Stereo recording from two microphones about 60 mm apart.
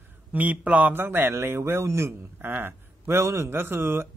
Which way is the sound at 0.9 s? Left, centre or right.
Right.